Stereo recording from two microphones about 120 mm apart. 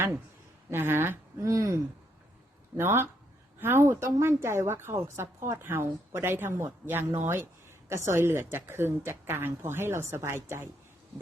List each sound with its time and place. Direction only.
0.7 s a woman's voice: 20° right (ahead or behind)